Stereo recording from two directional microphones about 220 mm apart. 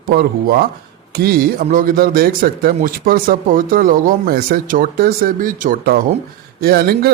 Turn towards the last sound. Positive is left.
turn(degrees=-45)  # may be behind; listen again after turning